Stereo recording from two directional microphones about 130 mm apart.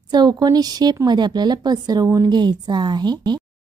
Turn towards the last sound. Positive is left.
turn(degrees=-35)  # may be behind; listen again after turning